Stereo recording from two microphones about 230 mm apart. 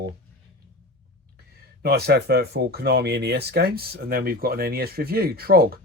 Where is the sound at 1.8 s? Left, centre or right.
Right.